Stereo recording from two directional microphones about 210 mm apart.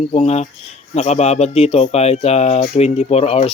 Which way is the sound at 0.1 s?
30° left (ahead or behind).